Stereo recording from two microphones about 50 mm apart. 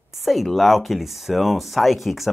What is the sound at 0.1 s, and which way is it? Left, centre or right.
Speech, centre.